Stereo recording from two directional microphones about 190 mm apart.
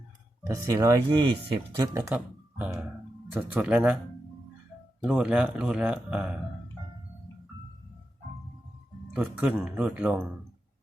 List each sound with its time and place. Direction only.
0.4 s speech: 15° right (ahead or behind)
2.0 s speech: 5° right (ahead or behind)
5.0 s a man's voice: 5° right (ahead or behind)
9.1 s speech: 5° right (ahead or behind)